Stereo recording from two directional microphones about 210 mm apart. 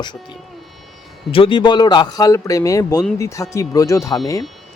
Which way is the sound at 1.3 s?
25° left (ahead or behind).